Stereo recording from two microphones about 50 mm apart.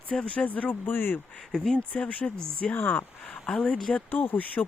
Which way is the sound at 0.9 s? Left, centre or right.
Left.